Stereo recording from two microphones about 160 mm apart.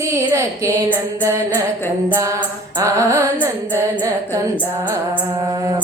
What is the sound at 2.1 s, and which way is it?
Music, 20° right (ahead or behind).